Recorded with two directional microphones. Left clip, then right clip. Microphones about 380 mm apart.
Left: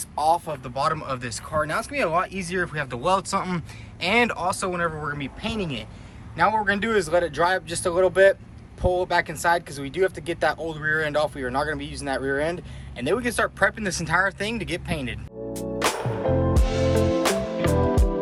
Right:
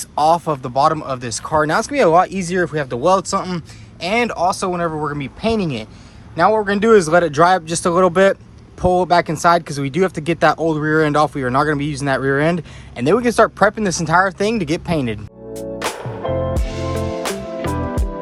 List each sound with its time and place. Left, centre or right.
0.2 s speech: centre
15.5 s music: centre